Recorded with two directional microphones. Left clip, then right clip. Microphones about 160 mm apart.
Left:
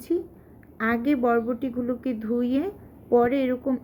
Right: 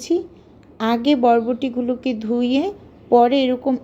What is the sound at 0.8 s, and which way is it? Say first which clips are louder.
A woman's voice: right 6 dB; 20° right (ahead or behind).